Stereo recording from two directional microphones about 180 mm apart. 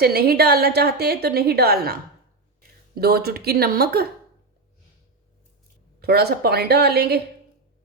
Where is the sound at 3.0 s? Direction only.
60° right (ahead or behind).